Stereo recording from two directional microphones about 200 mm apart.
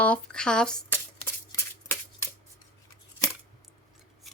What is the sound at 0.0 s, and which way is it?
Speech, 5° left (ahead or behind).